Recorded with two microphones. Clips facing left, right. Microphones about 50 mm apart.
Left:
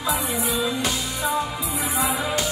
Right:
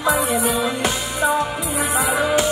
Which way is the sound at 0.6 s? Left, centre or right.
Right.